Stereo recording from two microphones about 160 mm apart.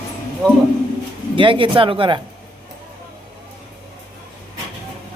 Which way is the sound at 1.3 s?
30° right (ahead or behind).